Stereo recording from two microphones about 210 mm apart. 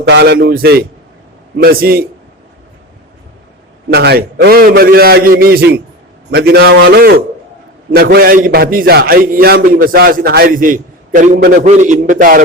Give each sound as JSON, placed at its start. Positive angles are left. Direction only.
{"t": 0.1, "sound": "a man's voice", "side_deg": -55}
{"t": 3.8, "sound": "a man's voice", "side_deg": -50}
{"t": 7.9, "sound": "a man's voice", "side_deg": -50}